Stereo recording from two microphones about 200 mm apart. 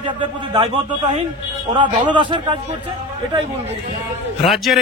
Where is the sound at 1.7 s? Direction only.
25° right (ahead or behind).